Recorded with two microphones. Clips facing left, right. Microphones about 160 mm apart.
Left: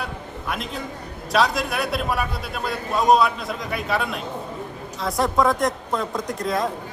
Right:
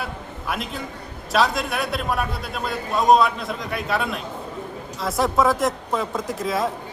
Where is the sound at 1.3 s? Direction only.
Centre (ahead or behind).